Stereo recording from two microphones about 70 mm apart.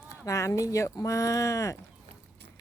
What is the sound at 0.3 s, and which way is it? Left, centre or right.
Speech, left.